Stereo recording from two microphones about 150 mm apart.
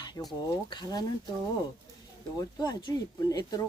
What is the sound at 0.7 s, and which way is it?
Speech, 25° left (ahead or behind).